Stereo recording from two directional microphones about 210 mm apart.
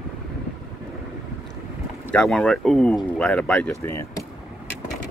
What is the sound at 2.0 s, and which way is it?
Speech, 5° left (ahead or behind).